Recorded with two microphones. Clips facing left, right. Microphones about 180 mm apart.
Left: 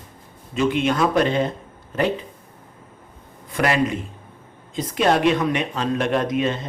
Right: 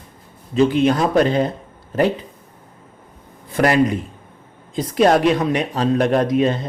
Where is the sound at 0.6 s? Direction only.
35° right (ahead or behind).